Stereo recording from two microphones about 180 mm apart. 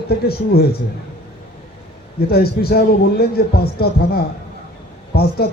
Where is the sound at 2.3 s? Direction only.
60° left (ahead or behind).